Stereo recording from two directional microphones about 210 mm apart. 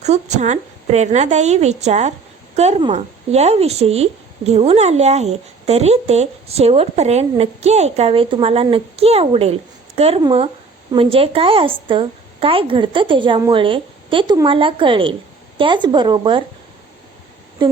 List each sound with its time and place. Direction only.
0.0 s a woman's voice: 35° right (ahead or behind)
17.6 s speech: 20° right (ahead or behind)